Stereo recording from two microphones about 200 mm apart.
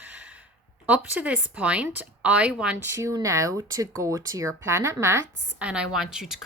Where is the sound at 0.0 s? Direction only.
5° right (ahead or behind).